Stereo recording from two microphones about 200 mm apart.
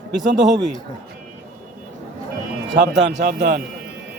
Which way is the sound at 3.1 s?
40° right (ahead or behind).